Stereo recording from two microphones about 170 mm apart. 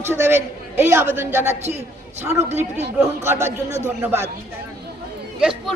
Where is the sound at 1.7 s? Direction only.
40° right (ahead or behind).